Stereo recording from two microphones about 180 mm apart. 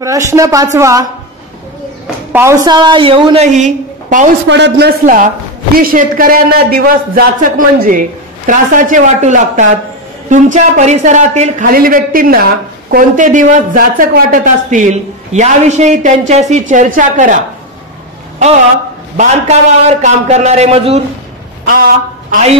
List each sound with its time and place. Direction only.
0.0 s speech: 20° right (ahead or behind)
2.3 s a woman's voice: 15° right (ahead or behind); by 4.3 s 45° right (ahead or behind)
4.5 s a man's voice: 75° right (ahead or behind)
5.0 s speech: 45° right (ahead or behind)
19.1 s a man's voice: 40° right (ahead or behind)
21.6 s a man's voice: 55° right (ahead or behind)